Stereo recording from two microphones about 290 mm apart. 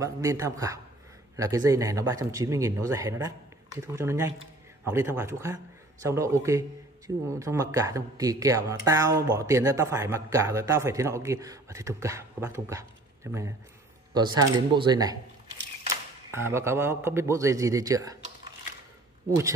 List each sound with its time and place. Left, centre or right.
0.0 s speech: centre
16.3 s speech: centre